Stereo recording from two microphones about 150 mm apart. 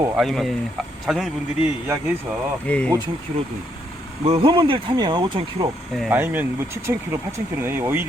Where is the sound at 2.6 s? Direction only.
10° left (ahead or behind).